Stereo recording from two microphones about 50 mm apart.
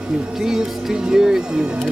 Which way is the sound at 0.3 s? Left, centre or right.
Centre.